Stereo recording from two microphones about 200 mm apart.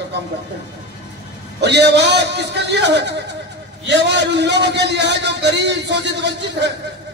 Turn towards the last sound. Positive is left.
turn(degrees=-60)  # may be behind; listen again after turning